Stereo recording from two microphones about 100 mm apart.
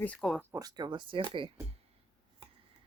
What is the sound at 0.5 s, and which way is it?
Speech, 40° right (ahead or behind).